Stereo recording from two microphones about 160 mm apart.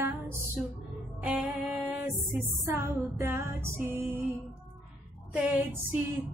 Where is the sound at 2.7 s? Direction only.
15° right (ahead or behind).